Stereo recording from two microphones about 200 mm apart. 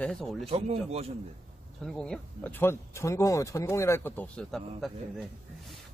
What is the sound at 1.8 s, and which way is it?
Speech, 5° left (ahead or behind).